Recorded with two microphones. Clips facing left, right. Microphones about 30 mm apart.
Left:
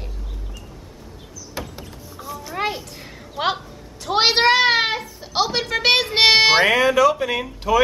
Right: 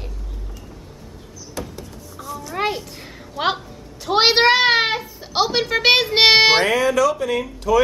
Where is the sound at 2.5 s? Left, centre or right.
Centre.